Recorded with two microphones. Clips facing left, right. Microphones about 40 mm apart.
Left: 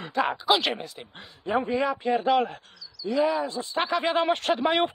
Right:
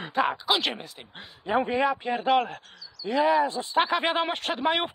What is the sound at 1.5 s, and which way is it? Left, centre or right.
Speech, centre.